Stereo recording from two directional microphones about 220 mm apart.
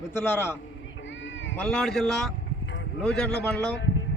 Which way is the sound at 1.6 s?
5° left (ahead or behind).